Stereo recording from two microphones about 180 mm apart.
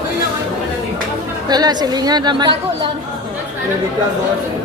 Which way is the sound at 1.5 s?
25° right (ahead or behind).